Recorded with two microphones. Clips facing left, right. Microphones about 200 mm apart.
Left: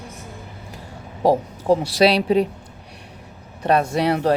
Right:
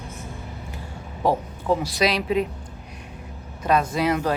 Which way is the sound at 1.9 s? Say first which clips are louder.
Left 6 dB; 35° left (ahead or behind).